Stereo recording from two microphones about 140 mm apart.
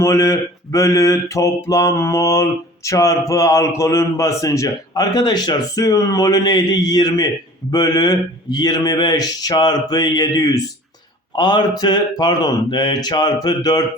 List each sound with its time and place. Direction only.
0.0 s mantra: 20° left (ahead or behind)
11.3 s speech: 30° left (ahead or behind)